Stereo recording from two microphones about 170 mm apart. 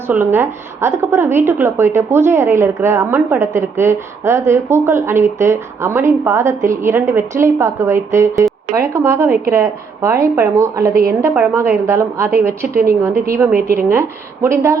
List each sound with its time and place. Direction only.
0.1 s a woman's voice: 15° right (ahead or behind)
12.6 s a woman's voice: 60° right (ahead or behind)
14.4 s a woman's voice: 15° right (ahead or behind)